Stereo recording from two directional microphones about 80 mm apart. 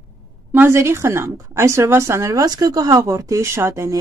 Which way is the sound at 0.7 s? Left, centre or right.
Right.